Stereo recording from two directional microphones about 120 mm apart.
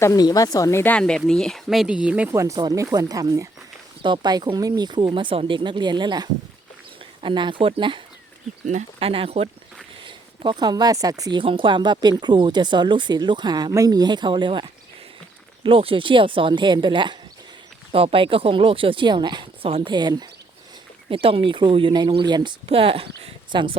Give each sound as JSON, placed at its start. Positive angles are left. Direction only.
{"t": 0.0, "sound": "speech", "side_deg": 30}
{"t": 0.9, "sound": "speech", "side_deg": 5}
{"t": 2.3, "sound": "speech", "side_deg": -25}
{"t": 10.0, "sound": "speech", "side_deg": -40}
{"t": 19.9, "sound": "speech", "side_deg": -35}
{"t": 21.1, "sound": "speech", "side_deg": -50}
{"t": 22.6, "sound": "speech", "side_deg": -50}